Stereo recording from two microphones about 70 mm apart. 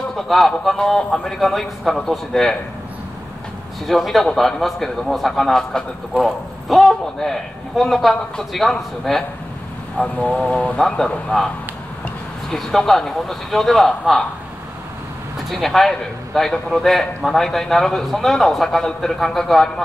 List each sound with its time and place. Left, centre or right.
0.1 s a man's voice: centre
3.8 s a man's voice: centre
9.9 s a man's voice: centre
15.5 s a man's voice: centre